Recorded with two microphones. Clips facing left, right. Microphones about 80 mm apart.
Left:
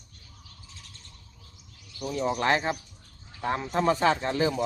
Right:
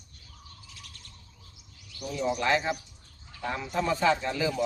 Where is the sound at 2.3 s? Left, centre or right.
Left.